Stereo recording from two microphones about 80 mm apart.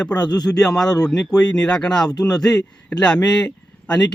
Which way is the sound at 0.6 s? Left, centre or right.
Centre.